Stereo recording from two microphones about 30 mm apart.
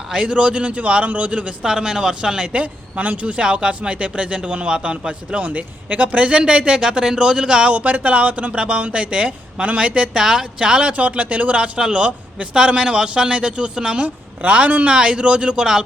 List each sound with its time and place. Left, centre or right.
0.3 s speech: right
1.6 s a man's voice: right
2.6 s speech: right
3.4 s a man's voice: right
5.5 s a man's voice: right
7.7 s speech: right
8.5 s a man's voice: right
10.2 s a man's voice: right
10.9 s speech: right
11.8 s a man's voice: right
14.4 s speech: right
14.8 s a man's voice: right